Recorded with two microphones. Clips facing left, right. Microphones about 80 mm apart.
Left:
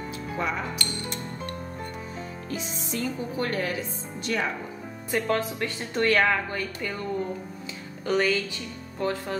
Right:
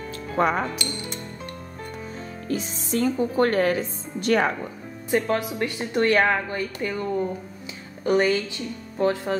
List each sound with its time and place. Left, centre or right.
0.4 s a woman's voice: right
2.5 s a woman's voice: right
5.1 s speech: centre
8.0 s speech: right